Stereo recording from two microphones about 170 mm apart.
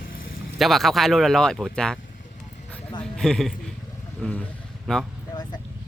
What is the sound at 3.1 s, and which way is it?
Speech, 5° left (ahead or behind).